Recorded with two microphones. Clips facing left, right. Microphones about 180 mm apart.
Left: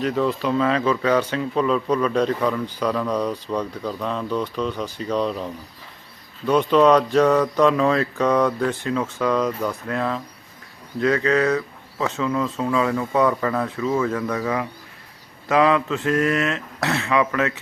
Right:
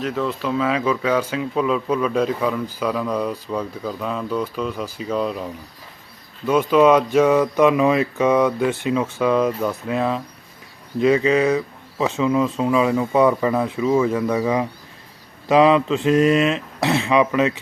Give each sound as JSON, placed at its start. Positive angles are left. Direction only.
{"t": 0.0, "sound": "speech", "side_deg": 0}